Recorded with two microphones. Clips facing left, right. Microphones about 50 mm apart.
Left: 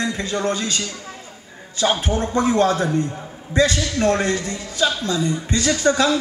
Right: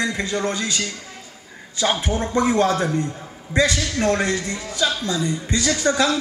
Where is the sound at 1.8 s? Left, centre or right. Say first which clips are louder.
Left 2 dB; left.